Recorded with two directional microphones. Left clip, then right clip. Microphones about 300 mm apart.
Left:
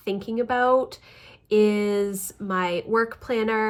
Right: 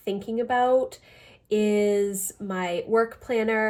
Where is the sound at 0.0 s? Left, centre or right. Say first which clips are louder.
Left 1 dB; centre.